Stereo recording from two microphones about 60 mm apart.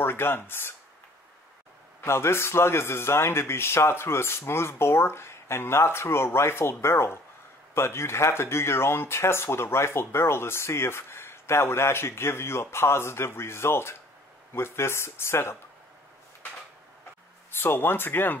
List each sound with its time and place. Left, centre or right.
0.0 s speech: left
2.0 s speech: left
17.5 s speech: left